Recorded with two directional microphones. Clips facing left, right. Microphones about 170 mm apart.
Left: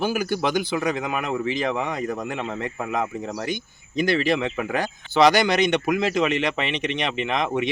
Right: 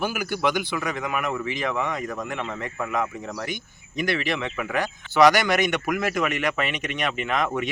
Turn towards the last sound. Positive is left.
turn(degrees=20)  # may be behind; listen again after turning